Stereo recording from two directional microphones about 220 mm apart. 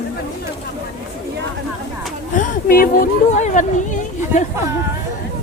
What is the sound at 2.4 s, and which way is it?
Speech, 40° left (ahead or behind).